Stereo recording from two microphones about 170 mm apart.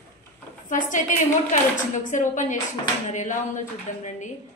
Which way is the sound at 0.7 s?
50° left (ahead or behind).